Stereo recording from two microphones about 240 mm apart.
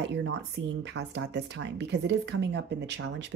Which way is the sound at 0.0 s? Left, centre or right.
Right.